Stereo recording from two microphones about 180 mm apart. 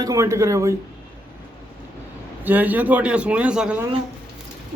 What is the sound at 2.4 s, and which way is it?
A man's voice, 10° right (ahead or behind).